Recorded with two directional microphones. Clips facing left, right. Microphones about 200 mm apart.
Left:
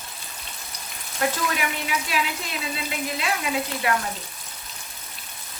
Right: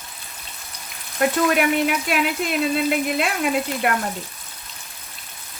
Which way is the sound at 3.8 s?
55° right (ahead or behind).